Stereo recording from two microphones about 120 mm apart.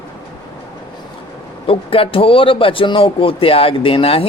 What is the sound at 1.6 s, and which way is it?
Speech, 50° left (ahead or behind).